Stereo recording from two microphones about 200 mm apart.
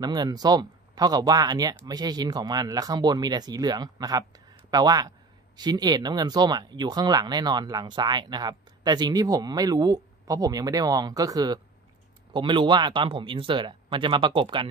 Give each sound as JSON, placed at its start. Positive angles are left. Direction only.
{"t": 0.0, "sound": "speech", "side_deg": -20}